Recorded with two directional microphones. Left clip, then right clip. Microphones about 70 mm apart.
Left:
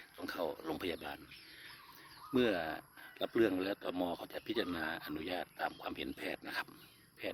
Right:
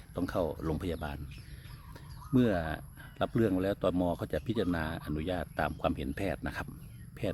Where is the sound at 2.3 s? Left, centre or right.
Right.